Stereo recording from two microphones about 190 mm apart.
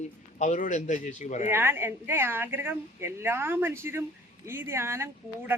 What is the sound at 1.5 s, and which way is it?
A woman's voice, 10° right (ahead or behind).